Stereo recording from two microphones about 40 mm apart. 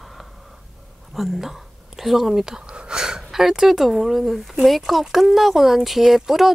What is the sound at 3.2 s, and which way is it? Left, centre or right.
Speech, centre.